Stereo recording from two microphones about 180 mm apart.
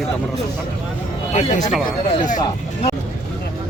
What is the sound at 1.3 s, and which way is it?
Speech, 40° left (ahead or behind).